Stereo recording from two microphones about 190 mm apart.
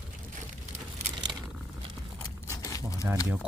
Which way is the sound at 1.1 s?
25° right (ahead or behind).